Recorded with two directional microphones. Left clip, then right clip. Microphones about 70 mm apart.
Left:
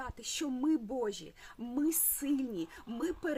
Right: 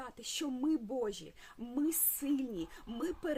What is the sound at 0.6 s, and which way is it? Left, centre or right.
Speech, left.